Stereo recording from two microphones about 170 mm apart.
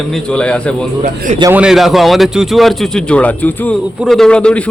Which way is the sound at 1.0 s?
45° right (ahead or behind).